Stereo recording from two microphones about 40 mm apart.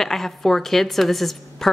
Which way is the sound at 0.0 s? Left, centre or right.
Centre.